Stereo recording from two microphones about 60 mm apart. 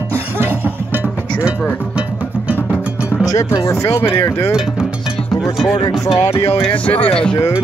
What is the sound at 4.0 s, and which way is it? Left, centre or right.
Speech, left.